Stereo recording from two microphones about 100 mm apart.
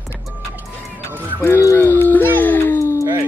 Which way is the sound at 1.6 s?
25° left (ahead or behind).